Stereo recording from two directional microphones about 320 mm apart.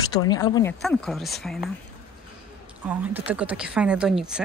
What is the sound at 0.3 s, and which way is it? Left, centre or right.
Speech, centre.